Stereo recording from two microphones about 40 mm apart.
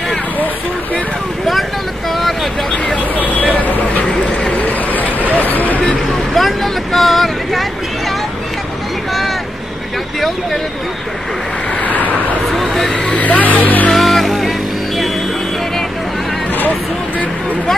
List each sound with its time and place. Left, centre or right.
1.4 s vehicle: centre
3.5 s vehicle: left
5.3 s a sound: left
6.3 s vehicle: centre
11.8 s vehicle: left
12.4 s a sound: centre
12.8 s vehicle: centre
13.1 s vehicle: left
13.9 s music: centre